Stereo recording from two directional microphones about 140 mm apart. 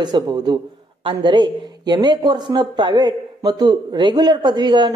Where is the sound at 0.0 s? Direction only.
30° right (ahead or behind).